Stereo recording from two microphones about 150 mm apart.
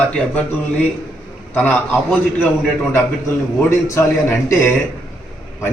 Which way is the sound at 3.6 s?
15° left (ahead or behind).